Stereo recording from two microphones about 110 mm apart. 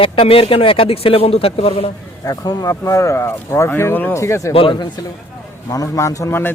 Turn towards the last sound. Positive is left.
turn(degrees=30)  # may be behind; listen again after turning